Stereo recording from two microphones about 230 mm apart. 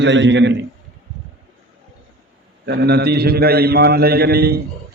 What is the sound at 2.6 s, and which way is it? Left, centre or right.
A man's voice, right.